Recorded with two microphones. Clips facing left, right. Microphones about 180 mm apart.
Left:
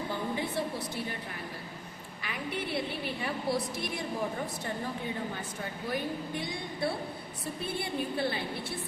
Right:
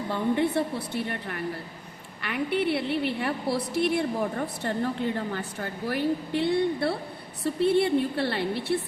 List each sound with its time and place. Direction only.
0.1 s a woman's voice: 65° right (ahead or behind)